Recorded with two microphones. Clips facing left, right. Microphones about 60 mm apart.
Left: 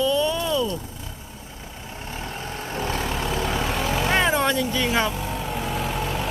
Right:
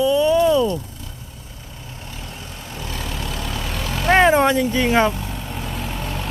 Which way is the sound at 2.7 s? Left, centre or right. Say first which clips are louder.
Left 4 dB; left.